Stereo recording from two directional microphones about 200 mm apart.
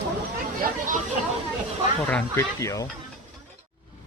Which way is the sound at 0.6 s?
40° right (ahead or behind).